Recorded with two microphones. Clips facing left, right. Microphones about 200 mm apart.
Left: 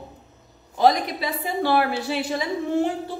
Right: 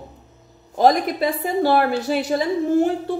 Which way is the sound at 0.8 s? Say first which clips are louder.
Right 3 dB; 50° right (ahead or behind).